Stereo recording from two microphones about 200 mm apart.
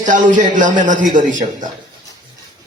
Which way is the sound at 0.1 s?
40° right (ahead or behind).